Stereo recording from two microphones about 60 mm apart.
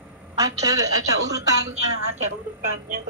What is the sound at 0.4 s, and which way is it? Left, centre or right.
Speech, right.